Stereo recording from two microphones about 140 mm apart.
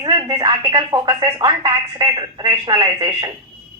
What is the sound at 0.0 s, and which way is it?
Speech, 30° right (ahead or behind).